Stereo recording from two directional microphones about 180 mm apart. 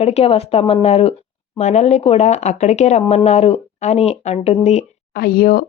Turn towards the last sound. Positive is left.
turn(degrees=55)  # may be behind; listen again after turning